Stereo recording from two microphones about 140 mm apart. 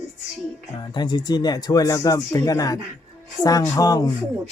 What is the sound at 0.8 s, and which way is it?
Speech, 30° left (ahead or behind).